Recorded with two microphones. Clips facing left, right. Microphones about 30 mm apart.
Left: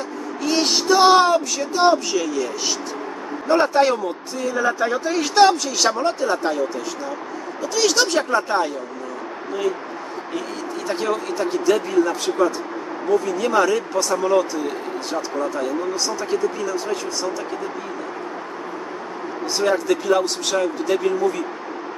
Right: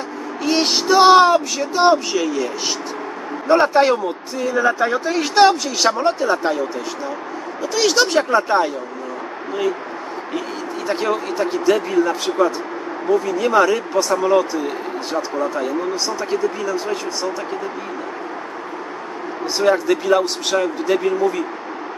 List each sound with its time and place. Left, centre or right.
0.4 s speech: centre
7.6 s speech: centre
10.9 s speech: centre
19.4 s speech: centre